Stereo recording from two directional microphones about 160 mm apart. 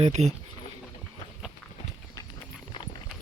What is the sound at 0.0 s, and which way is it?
Speech, 40° right (ahead or behind).